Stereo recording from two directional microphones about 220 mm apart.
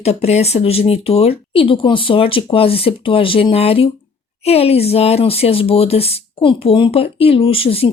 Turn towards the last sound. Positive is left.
turn(degrees=25)  # may be behind; listen again after turning